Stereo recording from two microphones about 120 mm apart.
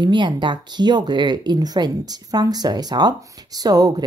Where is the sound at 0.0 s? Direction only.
40° right (ahead or behind).